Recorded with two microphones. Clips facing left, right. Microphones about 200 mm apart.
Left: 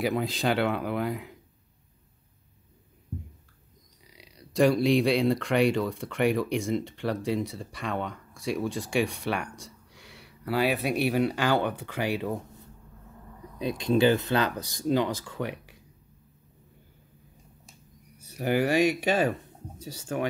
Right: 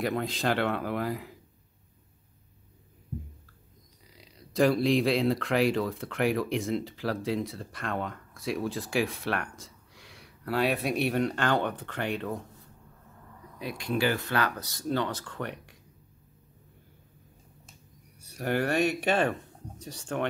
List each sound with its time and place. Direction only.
0.0 s speech: centre (ahead or behind)
4.0 s speech: centre (ahead or behind)
13.6 s speech: 20° left (ahead or behind); by 15.8 s 5° left (ahead or behind)
18.3 s speech: 5° left (ahead or behind)